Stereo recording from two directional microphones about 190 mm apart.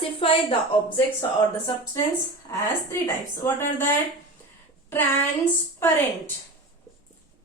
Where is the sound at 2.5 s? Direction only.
15° left (ahead or behind).